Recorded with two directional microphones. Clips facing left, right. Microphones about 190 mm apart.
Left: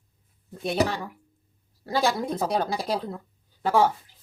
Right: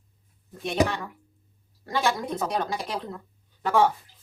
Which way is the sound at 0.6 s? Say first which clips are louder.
Even; 35° left (ahead or behind).